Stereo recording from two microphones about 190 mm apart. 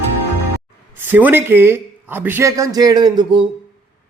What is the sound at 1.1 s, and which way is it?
Speech, 10° right (ahead or behind).